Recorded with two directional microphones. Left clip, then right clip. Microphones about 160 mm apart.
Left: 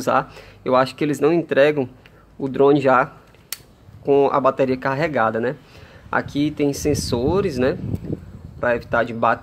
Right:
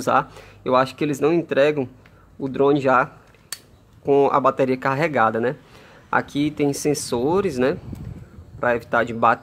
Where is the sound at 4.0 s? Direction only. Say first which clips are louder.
Left 1 dB; 15° right (ahead or behind).